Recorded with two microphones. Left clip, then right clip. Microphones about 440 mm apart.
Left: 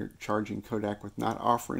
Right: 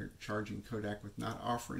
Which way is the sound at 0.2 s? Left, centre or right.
Centre.